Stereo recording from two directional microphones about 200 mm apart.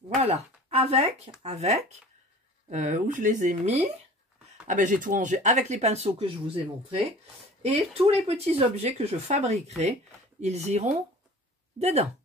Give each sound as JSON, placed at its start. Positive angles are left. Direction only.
{"t": 0.2, "sound": "speech", "side_deg": -30}
{"t": 7.6, "sound": "speech", "side_deg": -30}